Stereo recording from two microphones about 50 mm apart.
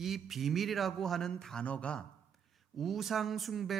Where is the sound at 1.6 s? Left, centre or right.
Left.